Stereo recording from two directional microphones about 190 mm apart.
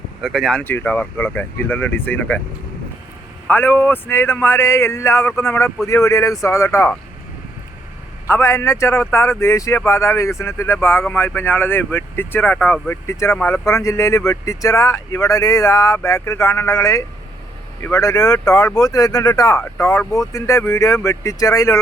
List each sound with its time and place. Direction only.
0.2 s speech: centre (ahead or behind)
3.4 s speech: 10° left (ahead or behind)
8.3 s speech: 15° left (ahead or behind)